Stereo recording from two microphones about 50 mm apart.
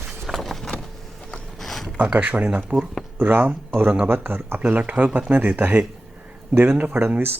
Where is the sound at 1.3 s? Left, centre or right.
Centre.